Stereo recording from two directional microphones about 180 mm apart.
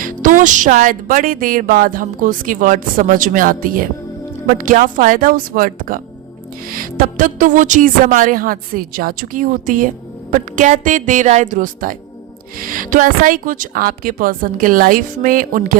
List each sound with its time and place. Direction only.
0.0 s speech: 45° right (ahead or behind)